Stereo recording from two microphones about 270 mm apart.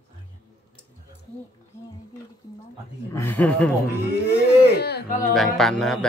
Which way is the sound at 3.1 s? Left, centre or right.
Centre.